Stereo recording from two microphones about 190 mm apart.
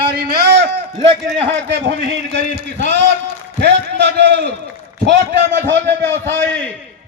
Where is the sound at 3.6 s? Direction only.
65° right (ahead or behind).